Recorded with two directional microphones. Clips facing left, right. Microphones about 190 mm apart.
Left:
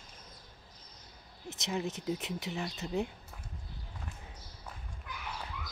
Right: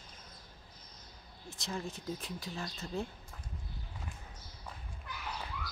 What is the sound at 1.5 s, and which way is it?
Speech, 20° left (ahead or behind).